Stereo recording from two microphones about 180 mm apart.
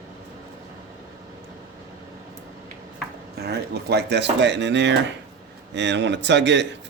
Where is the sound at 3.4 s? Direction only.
65° right (ahead or behind).